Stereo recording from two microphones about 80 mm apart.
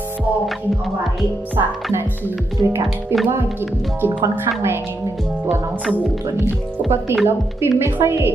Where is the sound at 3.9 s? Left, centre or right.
Right.